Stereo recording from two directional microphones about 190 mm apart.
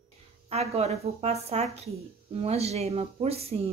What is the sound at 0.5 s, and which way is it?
Speech, 35° right (ahead or behind).